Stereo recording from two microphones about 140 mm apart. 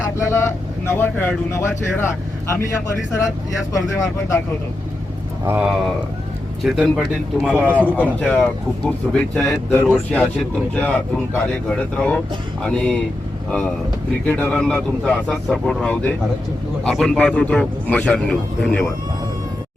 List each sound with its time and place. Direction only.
0.2 s vehicle: 20° left (ahead or behind)
0.9 s a man's voice: 15° left (ahead or behind)
5.5 s speech: 10° right (ahead or behind)
8.2 s a man's voice: 10° left (ahead or behind)
14.3 s a man's voice: 10° left (ahead or behind)